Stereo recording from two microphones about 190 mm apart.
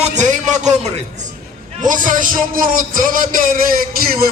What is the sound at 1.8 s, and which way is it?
Speech, 45° right (ahead or behind).